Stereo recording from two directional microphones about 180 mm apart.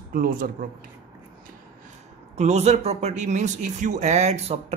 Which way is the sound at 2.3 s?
35° right (ahead or behind).